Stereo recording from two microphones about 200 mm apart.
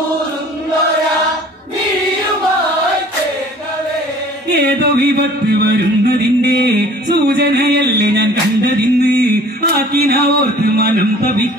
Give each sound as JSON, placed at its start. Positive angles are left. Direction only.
{"t": 4.5, "sound": "music", "side_deg": -55}